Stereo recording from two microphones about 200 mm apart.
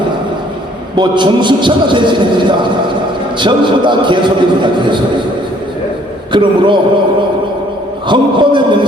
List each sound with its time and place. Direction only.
0.9 s a man's voice: 20° right (ahead or behind)
6.3 s a man's voice: 25° right (ahead or behind)
8.0 s a man's voice: 25° right (ahead or behind)